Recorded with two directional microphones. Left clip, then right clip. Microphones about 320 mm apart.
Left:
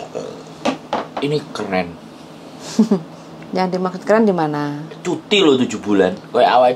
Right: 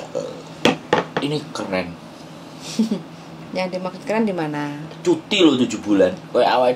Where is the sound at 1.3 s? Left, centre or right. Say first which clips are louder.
Left 4 dB; centre.